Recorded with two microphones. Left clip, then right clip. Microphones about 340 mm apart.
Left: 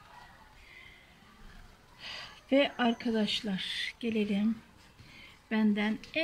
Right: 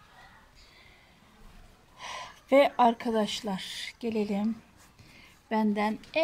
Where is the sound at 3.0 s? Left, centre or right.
Right.